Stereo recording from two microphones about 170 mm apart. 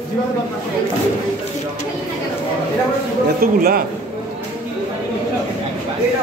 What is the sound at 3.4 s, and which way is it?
Speech, 60° right (ahead or behind).